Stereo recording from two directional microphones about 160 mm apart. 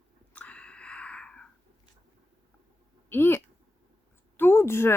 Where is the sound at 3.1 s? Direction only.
15° left (ahead or behind).